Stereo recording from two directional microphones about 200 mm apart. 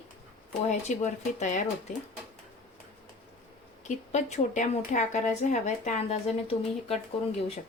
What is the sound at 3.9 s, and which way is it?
A woman's voice, 35° left (ahead or behind).